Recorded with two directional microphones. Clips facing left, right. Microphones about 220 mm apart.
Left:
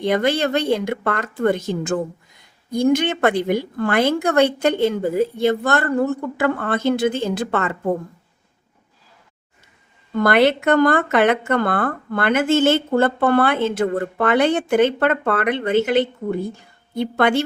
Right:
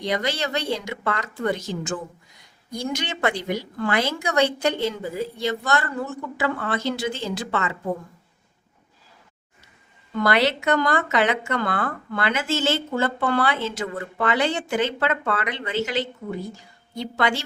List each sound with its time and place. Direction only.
0.0 s speech: 55° left (ahead or behind)
10.2 s speech: 55° left (ahead or behind)